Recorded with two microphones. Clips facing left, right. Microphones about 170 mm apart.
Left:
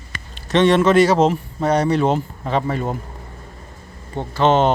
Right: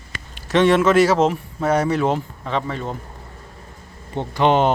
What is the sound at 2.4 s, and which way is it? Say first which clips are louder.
Speech: left 4 dB; 40° left (ahead or behind).